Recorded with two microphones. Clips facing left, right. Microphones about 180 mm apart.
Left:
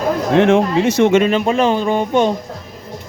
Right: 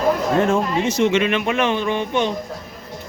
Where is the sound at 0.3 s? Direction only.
90° left; by 1.1 s 65° left (ahead or behind).